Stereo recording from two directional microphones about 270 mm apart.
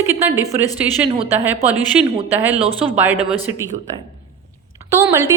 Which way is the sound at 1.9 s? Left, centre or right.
Centre.